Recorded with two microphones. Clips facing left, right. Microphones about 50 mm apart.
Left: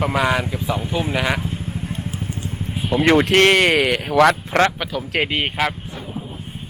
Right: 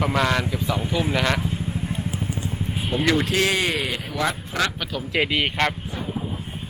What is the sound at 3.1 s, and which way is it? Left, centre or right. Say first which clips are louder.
Speech: left 8 dB; left.